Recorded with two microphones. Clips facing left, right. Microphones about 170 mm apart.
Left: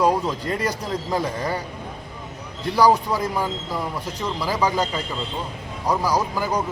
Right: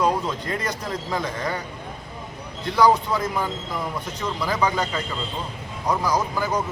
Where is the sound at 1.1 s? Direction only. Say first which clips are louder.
Left 3 dB; 10° left (ahead or behind).